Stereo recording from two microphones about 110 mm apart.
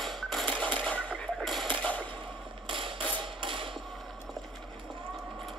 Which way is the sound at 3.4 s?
50° right (ahead or behind).